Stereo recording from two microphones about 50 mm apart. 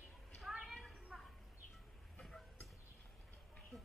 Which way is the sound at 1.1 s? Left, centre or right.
Centre.